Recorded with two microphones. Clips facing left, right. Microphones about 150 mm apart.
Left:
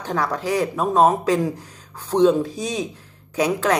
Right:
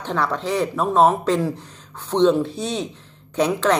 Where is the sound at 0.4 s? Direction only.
10° left (ahead or behind).